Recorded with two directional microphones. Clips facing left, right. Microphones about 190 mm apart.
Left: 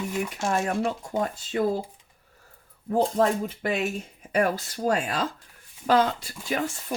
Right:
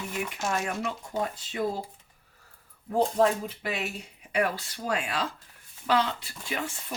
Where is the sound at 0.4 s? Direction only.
40° left (ahead or behind).